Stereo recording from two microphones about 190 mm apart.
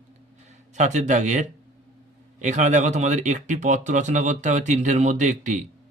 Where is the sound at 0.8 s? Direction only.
40° right (ahead or behind).